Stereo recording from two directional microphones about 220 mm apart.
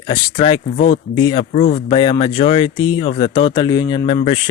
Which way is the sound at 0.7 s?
40° left (ahead or behind).